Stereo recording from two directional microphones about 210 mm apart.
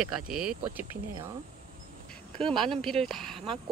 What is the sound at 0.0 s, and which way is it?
Speech, centre (ahead or behind).